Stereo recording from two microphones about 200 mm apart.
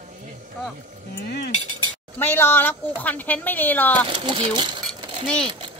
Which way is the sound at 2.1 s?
10° left (ahead or behind).